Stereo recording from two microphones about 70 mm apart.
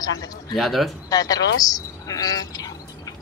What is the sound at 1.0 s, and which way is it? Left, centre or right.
A man's voice, left.